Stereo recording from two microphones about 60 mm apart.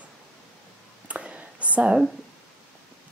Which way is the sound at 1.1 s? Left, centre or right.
Right.